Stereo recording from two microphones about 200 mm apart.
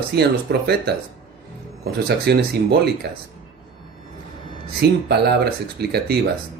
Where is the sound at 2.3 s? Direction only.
55° right (ahead or behind).